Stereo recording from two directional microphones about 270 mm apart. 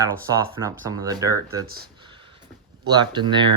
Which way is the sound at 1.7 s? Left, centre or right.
Right.